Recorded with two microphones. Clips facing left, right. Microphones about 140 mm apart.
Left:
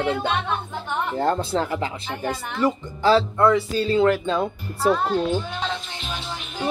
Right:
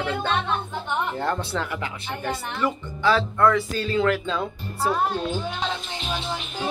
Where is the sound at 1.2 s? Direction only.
30° left (ahead or behind).